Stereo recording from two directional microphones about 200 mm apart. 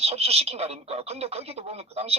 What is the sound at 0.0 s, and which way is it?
Speech, 30° right (ahead or behind).